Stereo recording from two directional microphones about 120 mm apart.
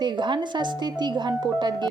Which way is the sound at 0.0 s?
40° right (ahead or behind).